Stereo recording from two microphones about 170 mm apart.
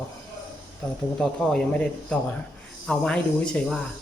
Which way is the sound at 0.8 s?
5° left (ahead or behind).